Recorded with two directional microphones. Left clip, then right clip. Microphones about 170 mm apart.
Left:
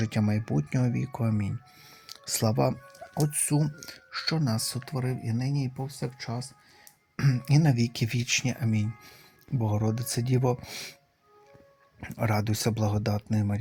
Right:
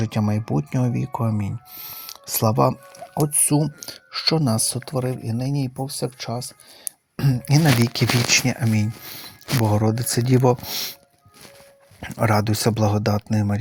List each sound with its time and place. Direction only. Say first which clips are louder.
0.0 s speech: right 5 dB; centre (ahead or behind)
1.8 s a sound: right 12 dB; 5° left (ahead or behind)
2.0 s speech: right 7 dB; 5° right (ahead or behind)
3.2 s speech: right 8 dB; 30° right (ahead or behind)
7.2 s speech: right 6 dB; 20° right (ahead or behind)
11.9 s speech: right 9 dB; 15° right (ahead or behind)